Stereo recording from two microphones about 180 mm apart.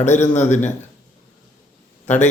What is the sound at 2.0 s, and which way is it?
Speech, 40° left (ahead or behind).